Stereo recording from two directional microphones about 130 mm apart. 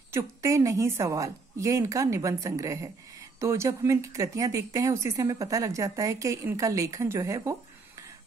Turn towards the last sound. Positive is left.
turn(degrees=-25)  # may be behind; listen again after turning